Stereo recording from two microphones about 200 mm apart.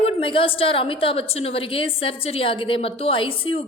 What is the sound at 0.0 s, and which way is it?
A woman's voice, 25° left (ahead or behind).